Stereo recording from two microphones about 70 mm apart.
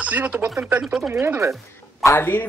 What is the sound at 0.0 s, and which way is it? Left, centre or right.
Speech, right.